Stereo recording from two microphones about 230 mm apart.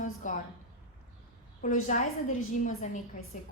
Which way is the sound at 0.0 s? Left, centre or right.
Left.